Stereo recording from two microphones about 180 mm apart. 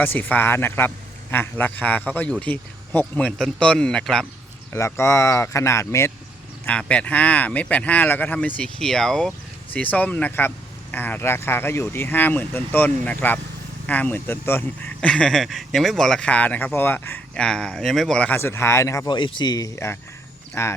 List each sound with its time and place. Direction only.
0.0 s speech: 10° left (ahead or behind)
4.7 s speech: 15° left (ahead or behind)